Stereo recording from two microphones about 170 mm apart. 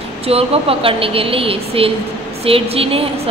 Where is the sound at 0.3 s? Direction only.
35° right (ahead or behind).